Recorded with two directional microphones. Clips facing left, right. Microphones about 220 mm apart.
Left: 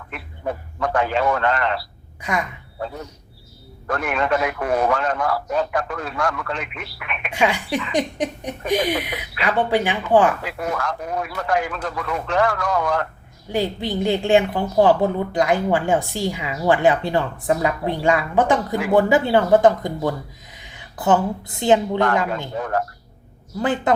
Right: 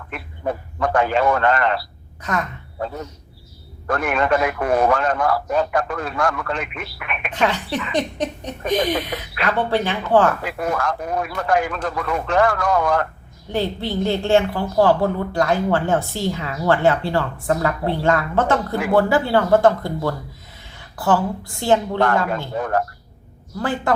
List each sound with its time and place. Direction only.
0.1 s a man's voice: 50° right (ahead or behind)
2.2 s a woman's voice: 10° left (ahead or behind)
3.8 s a man's voice: 50° right (ahead or behind)
7.3 s a woman's voice: 10° left (ahead or behind)
10.4 s a man's voice: 50° right (ahead or behind)
13.5 s a woman's voice: 15° left (ahead or behind)
23.6 s a woman's voice: 20° left (ahead or behind)